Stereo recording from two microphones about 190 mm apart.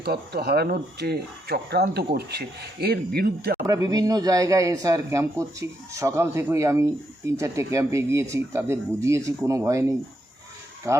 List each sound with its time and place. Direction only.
0.0 s speech: 55° right (ahead or behind)
3.7 s speech: 20° right (ahead or behind)